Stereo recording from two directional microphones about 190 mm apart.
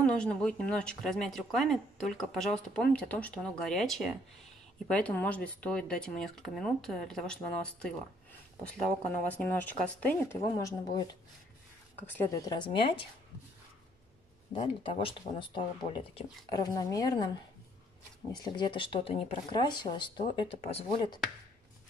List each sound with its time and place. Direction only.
0.0 s speech: 5° left (ahead or behind)
9.3 s a woman's voice: 10° left (ahead or behind); by 13.0 s 25° left (ahead or behind)
14.5 s speech: 30° left (ahead or behind)
18.3 s speech: 20° left (ahead or behind)